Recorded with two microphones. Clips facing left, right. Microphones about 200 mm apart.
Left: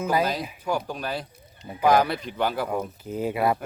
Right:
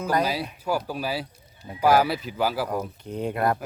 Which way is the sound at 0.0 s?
5° left (ahead or behind).